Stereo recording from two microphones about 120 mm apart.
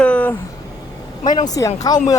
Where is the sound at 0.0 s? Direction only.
10° left (ahead or behind).